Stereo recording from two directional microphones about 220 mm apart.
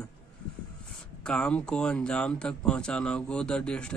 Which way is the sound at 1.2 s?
5° left (ahead or behind).